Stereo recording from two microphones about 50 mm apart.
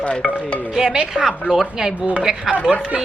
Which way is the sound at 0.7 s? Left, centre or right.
Centre.